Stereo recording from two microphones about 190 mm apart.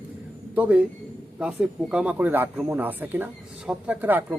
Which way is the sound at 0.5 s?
10° right (ahead or behind).